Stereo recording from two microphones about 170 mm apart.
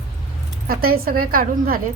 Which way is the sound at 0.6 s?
60° right (ahead or behind).